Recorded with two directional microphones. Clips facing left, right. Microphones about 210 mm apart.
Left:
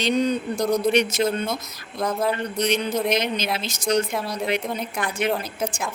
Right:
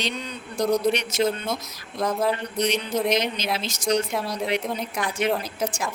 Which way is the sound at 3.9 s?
5° left (ahead or behind).